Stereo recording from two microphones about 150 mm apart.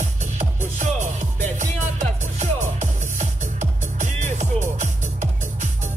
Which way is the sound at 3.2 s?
55° right (ahead or behind).